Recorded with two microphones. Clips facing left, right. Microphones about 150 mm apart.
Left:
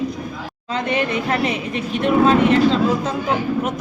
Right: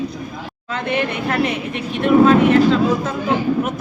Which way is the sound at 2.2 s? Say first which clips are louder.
Right 2 dB; 30° left (ahead or behind).